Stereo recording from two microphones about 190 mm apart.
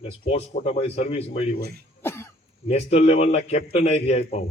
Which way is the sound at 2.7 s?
35° left (ahead or behind).